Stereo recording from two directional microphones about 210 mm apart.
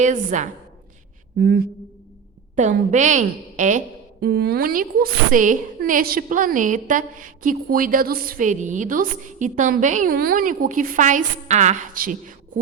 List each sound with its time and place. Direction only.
0.0 s a woman's voice: 35° right (ahead or behind)
2.6 s a woman's voice: 35° right (ahead or behind)